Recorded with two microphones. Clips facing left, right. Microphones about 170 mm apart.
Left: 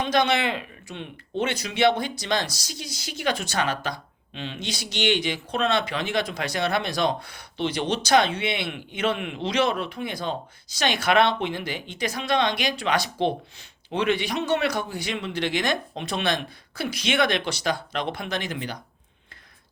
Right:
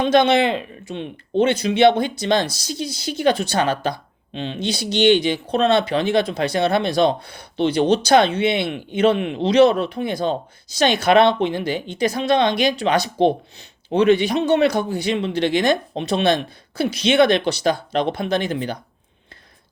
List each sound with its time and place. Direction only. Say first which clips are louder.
0.0 s speech: right 7 dB; 25° right (ahead or behind)
14.3 s speech: right 7 dB; 25° right (ahead or behind)